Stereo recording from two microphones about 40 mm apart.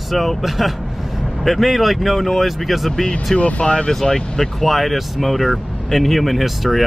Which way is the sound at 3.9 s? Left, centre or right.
Centre.